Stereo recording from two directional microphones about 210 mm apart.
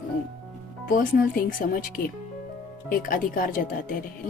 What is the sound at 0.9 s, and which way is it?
Speech, 40° left (ahead or behind).